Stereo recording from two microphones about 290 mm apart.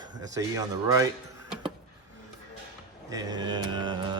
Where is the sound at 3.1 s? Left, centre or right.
Centre.